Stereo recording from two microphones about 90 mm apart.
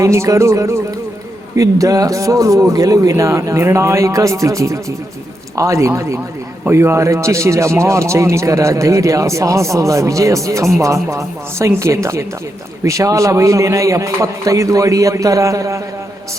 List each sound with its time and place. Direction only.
0.0 s speech: 35° right (ahead or behind)